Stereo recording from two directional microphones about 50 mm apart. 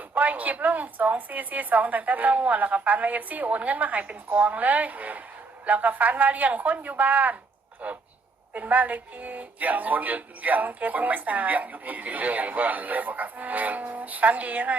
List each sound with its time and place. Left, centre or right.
0.1 s speech: right